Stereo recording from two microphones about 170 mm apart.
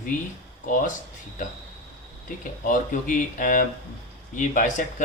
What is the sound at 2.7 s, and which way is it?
Speech, 50° left (ahead or behind).